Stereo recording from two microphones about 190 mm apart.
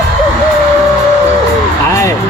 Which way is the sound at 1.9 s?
15° left (ahead or behind).